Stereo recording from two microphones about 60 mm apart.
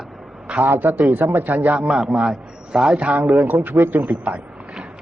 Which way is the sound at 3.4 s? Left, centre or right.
Right.